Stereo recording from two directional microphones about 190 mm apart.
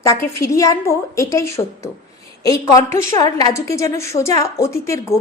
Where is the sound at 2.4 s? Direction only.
20° left (ahead or behind).